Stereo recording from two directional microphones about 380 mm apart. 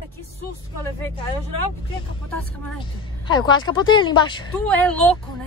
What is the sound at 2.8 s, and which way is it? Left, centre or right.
A woman's voice, centre.